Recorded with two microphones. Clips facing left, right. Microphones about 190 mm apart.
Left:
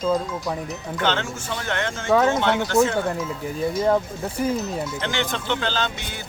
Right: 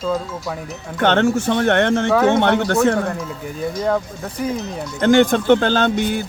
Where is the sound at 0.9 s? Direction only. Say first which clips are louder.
Right 10 dB; 60° right (ahead or behind).